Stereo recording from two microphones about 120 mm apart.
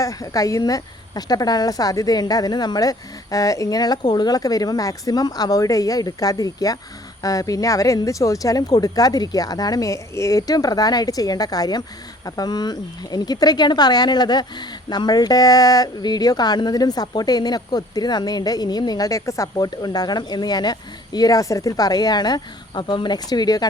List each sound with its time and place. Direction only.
0.0 s speech: 30° left (ahead or behind)